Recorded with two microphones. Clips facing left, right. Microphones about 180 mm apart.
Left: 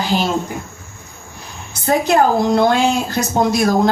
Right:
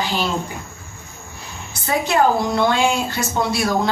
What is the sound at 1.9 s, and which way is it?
A woman's voice, 45° left (ahead or behind).